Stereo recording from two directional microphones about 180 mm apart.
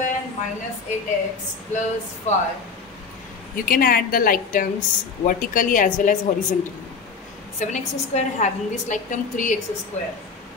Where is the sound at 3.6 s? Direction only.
55° left (ahead or behind).